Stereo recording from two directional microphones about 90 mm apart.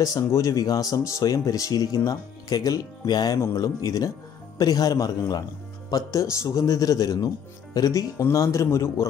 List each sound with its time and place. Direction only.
0.0 s speech: 40° left (ahead or behind)
3.3 s speech: 30° left (ahead or behind)
3.6 s a man's voice: 45° left (ahead or behind)